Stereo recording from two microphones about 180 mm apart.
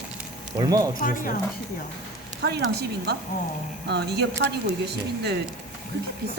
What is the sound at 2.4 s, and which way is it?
Speech, 70° right (ahead or behind).